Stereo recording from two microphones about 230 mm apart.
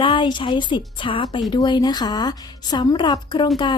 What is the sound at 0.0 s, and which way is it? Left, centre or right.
A woman's voice, left.